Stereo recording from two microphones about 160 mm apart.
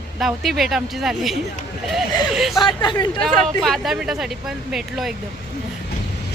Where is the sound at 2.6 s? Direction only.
30° left (ahead or behind).